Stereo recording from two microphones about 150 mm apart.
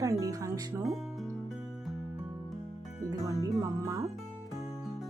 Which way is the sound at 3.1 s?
20° right (ahead or behind).